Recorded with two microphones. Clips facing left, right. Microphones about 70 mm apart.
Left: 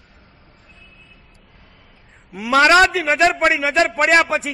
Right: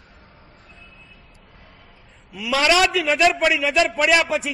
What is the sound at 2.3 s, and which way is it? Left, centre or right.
A man's voice, left.